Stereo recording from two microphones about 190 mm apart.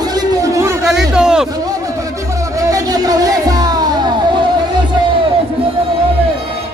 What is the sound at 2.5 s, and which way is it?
Music, 20° right (ahead or behind).